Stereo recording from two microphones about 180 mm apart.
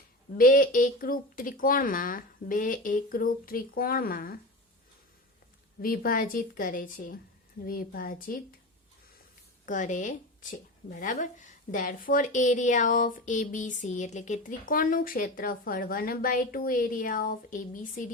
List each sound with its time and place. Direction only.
0.3 s a woman's voice: 50° left (ahead or behind)
5.8 s a woman's voice: 55° left (ahead or behind)
9.6 s a woman's voice: 45° left (ahead or behind)